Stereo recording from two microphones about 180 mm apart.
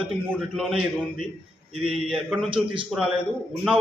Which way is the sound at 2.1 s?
Centre (ahead or behind).